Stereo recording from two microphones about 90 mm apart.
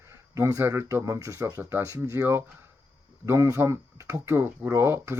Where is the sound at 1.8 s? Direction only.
35° right (ahead or behind).